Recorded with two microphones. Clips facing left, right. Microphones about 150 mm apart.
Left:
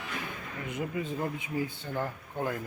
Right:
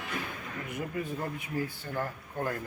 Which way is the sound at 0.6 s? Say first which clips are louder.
Left 2 dB; 20° left (ahead or behind).